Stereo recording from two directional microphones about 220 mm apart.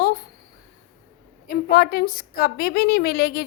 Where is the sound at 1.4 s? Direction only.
45° left (ahead or behind).